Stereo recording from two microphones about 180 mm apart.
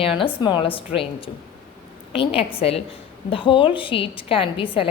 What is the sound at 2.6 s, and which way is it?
A woman's voice, 35° left (ahead or behind).